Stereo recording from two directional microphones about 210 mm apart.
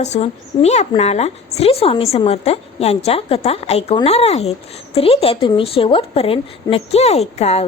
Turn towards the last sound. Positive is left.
turn(degrees=30)  # may be behind; listen again after turning